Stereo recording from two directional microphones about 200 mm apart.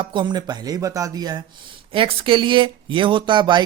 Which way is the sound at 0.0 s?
25° right (ahead or behind).